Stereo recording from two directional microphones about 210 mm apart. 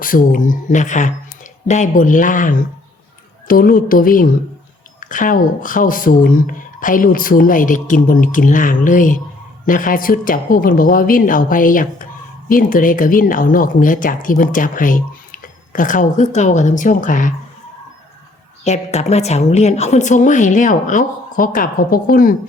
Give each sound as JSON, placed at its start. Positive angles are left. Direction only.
{"t": 0.0, "sound": "speech", "side_deg": 40}
{"t": 18.6, "sound": "speech", "side_deg": 30}